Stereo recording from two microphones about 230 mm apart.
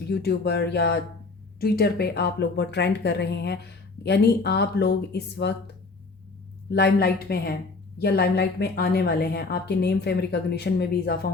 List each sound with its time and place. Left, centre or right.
0.1 s speech: left
6.7 s speech: left